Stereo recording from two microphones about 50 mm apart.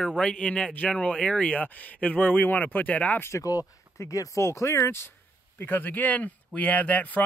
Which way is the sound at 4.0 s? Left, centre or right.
Left.